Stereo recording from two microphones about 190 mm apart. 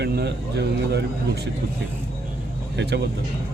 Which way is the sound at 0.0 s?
60° right (ahead or behind).